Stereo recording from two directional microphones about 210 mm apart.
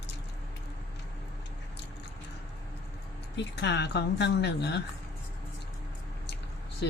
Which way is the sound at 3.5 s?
55° left (ahead or behind).